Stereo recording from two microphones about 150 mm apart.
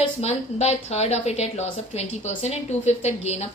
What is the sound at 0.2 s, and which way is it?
A woman's voice, 45° left (ahead or behind).